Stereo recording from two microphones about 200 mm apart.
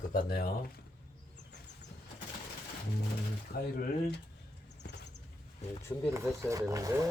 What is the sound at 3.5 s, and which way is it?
Speech, 50° left (ahead or behind).